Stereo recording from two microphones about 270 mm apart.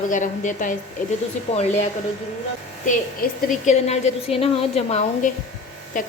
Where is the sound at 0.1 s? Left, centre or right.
Left.